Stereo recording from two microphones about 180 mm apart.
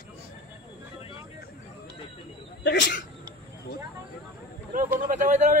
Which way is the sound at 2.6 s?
70° left (ahead or behind).